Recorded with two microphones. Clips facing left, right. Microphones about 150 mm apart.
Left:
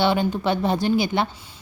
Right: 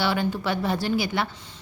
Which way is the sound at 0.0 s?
20° left (ahead or behind).